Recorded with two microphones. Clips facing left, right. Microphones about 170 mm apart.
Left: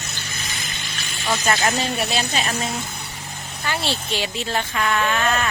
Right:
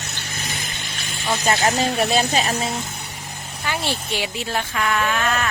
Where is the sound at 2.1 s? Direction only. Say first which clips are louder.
Right 4 dB; 40° right (ahead or behind).